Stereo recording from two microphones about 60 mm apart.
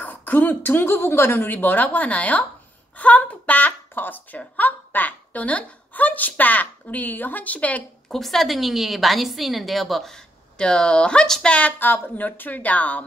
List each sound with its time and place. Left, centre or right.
0.0 s a woman's voice: left
8.1 s a woman's voice: centre
11.8 s speech: left